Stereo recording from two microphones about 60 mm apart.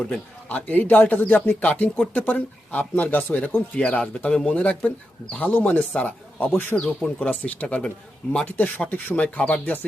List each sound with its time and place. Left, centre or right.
0.4 s speech: left
3.8 s speech: centre
6.5 s speech: left
6.7 s speech: left